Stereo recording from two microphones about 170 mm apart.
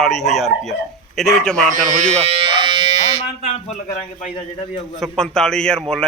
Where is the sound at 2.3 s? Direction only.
30° right (ahead or behind).